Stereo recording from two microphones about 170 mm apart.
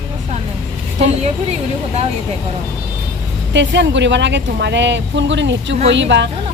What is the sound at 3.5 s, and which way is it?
A woman's voice, 90° right.